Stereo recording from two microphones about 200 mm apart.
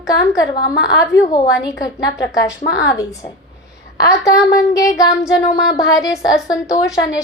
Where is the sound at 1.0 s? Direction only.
15° left (ahead or behind).